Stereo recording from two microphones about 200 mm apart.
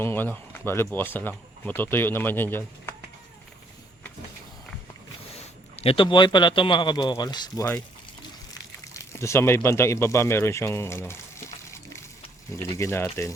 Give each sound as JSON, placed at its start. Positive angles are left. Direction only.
{"t": 0.0, "sound": "speech", "side_deg": 10}
{"t": 5.7, "sound": "speech", "side_deg": 30}
{"t": 8.5, "sound": "a sound", "side_deg": 15}
{"t": 12.7, "sound": "speech", "side_deg": 15}